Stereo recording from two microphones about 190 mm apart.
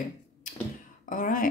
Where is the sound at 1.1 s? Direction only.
45° left (ahead or behind).